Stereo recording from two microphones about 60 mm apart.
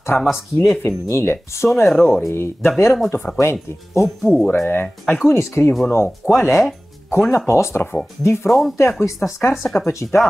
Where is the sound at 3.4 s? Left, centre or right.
Left.